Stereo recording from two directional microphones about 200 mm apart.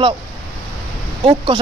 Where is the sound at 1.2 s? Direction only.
25° right (ahead or behind).